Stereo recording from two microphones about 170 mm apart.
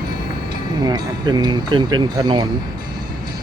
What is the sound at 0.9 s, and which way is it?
Speech, 25° right (ahead or behind).